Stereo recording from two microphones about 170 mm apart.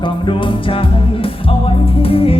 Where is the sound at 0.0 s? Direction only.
30° left (ahead or behind).